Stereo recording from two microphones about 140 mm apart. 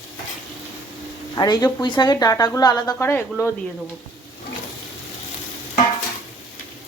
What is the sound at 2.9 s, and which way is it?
Speech, 15° left (ahead or behind).